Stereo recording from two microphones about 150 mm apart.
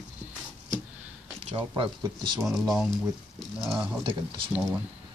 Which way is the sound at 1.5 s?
30° right (ahead or behind).